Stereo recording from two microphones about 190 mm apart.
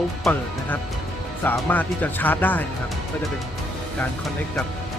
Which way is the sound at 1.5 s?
10° left (ahead or behind).